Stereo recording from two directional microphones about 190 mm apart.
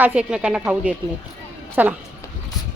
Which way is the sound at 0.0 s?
5° right (ahead or behind).